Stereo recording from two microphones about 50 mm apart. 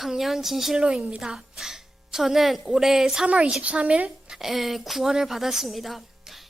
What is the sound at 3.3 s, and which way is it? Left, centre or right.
A woman's voice, right.